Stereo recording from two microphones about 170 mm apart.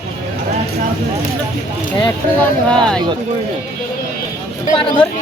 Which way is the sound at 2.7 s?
5° left (ahead or behind).